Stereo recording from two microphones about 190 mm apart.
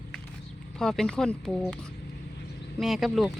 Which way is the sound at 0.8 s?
5° left (ahead or behind).